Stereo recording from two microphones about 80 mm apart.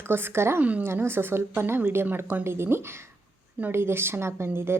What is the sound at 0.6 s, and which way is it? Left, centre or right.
Speech, centre.